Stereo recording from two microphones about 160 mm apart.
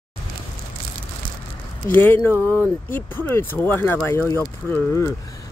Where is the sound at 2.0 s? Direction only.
15° left (ahead or behind).